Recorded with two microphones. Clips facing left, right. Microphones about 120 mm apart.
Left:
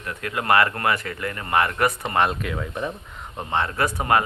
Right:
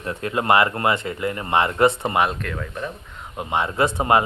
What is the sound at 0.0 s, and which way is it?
Speech, 30° right (ahead or behind).